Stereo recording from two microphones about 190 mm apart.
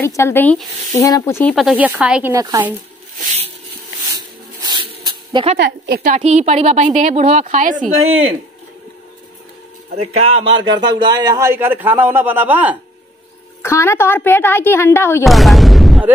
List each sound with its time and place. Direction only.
0.0 s a woman's voice: 15° left (ahead or behind)
1.5 s speech: centre (ahead or behind)
2.3 s speech: 20° right (ahead or behind)
4.6 s a sound: 20° right (ahead or behind)
5.6 s a woman's voice: 55° right (ahead or behind)
6.1 s a woman's voice: 35° right (ahead or behind)
10.1 s speech: 30° right (ahead or behind); by 12.7 s 10° right (ahead or behind)
13.6 s a woman's voice: 15° left (ahead or behind)
15.2 s speech: centre (ahead or behind)